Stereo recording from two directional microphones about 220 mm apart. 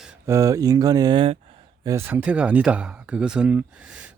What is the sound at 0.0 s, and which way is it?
Speech, 10° right (ahead or behind).